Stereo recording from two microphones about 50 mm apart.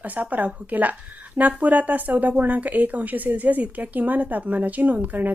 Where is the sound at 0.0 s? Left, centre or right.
Right.